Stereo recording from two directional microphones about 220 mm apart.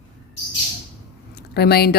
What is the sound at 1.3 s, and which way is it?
Speech, 45° left (ahead or behind).